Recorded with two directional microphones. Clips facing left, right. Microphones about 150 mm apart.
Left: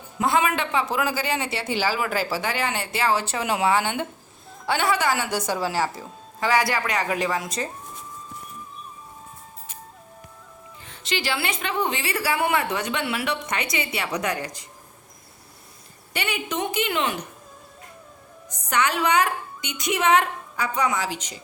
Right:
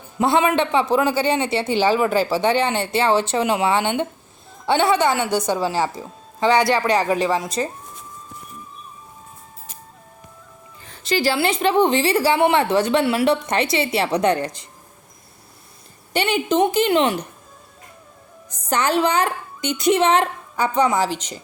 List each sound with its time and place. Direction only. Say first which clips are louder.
0.2 s a man's voice: right 5 dB; 25° right (ahead or behind)
10.8 s a woman's voice: right 7 dB; 35° right (ahead or behind)
16.1 s a woman's voice: right 9 dB; 30° right (ahead or behind)
18.7 s a woman's voice: right 3 dB; 30° right (ahead or behind)